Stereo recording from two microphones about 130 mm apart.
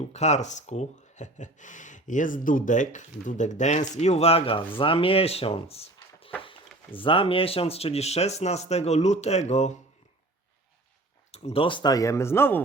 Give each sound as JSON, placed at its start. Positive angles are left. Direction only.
{"t": 0.0, "sound": "speech", "side_deg": 60}
{"t": 11.3, "sound": "speech", "side_deg": 55}